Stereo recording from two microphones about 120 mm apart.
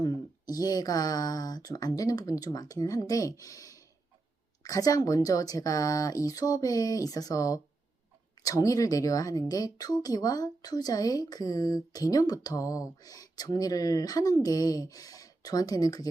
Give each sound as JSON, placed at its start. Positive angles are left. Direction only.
{"t": 0.0, "sound": "speech", "side_deg": 30}